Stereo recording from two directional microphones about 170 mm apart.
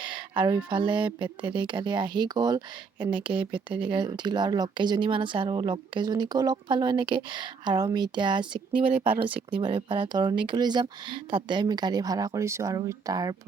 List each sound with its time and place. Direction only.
0.0 s speech: 30° right (ahead or behind)